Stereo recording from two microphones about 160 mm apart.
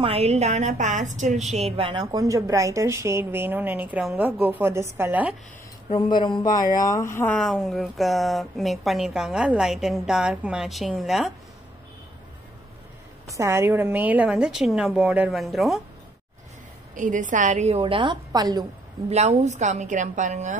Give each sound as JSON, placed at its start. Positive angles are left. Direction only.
{"t": 0.0, "sound": "a woman's voice", "side_deg": -40}
{"t": 2.0, "sound": "a woman's voice", "side_deg": -20}
{"t": 5.9, "sound": "speech", "side_deg": 30}
{"t": 7.3, "sound": "a woman's voice", "side_deg": 0}
{"t": 13.3, "sound": "a woman's voice", "side_deg": -20}
{"t": 16.9, "sound": "a woman's voice", "side_deg": -55}
{"t": 19.0, "sound": "a woman's voice", "side_deg": -45}